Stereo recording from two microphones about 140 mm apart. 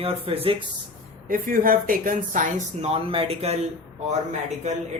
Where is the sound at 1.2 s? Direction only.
85° right.